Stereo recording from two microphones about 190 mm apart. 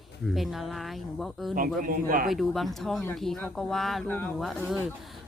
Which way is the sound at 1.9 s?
45° right (ahead or behind).